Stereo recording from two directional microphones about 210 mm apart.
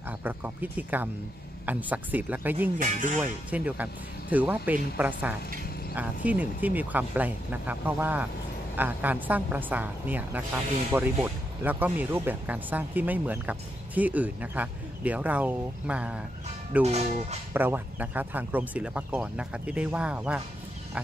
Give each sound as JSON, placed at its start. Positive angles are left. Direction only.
{"t": 0.2, "sound": "a woman's voice", "side_deg": -10}
{"t": 2.8, "sound": "speech", "side_deg": -40}
{"t": 3.2, "sound": "a woman's voice", "side_deg": -5}
{"t": 16.8, "sound": "speech", "side_deg": -30}
{"t": 17.5, "sound": "a woman's voice", "side_deg": -10}